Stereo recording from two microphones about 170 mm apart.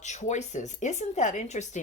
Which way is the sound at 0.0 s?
45° left (ahead or behind).